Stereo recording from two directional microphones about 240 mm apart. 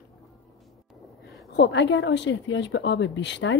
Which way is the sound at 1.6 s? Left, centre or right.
Left.